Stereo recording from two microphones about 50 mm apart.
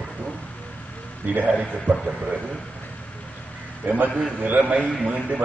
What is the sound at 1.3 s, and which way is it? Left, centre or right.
Speech, right.